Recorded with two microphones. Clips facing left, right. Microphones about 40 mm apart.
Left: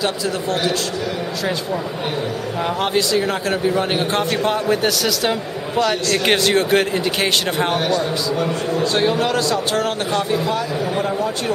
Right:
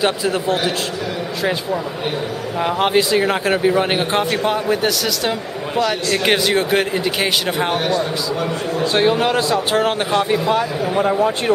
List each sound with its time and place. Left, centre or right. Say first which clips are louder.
0.0 s speech: right 3 dB; right
2.6 s a man's voice: right 4 dB; right
8.8 s speech: right 3 dB; centre